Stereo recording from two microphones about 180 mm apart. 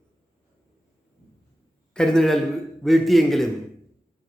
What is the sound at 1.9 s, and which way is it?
A man's voice, 5° left (ahead or behind).